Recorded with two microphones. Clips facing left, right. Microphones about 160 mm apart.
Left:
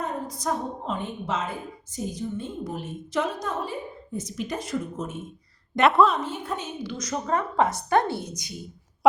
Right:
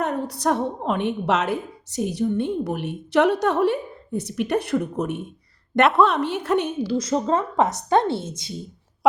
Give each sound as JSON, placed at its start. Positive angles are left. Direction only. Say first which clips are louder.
{"t": 0.0, "sound": "a woman's voice", "louder": "right 6 dB", "side_deg": -70}
{"t": 5.8, "sound": "a woman's voice", "louder": "right 1 dB", "side_deg": 0}
{"t": 6.1, "sound": "a woman's voice", "louder": "right 9 dB", "side_deg": -70}
{"t": 6.8, "sound": "a woman's voice", "louder": "right 8 dB", "side_deg": -30}